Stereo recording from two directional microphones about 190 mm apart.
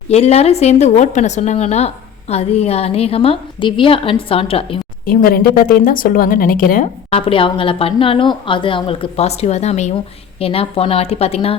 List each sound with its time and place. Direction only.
0.1 s a woman's voice: 35° left (ahead or behind)
5.0 s a woman's voice: 50° left (ahead or behind)
7.1 s a woman's voice: 30° left (ahead or behind)